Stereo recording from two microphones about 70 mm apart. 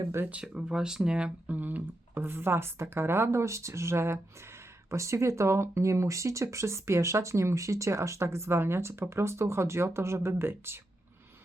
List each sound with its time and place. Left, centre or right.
0.4 s speech: centre; by 10.8 s right